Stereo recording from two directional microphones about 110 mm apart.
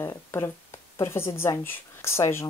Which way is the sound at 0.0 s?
25° left (ahead or behind).